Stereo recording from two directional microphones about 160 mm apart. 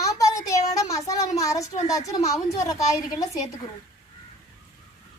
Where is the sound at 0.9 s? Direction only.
20° left (ahead or behind).